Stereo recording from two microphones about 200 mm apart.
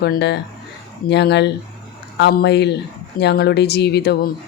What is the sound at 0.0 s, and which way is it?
Speech, 55° left (ahead or behind).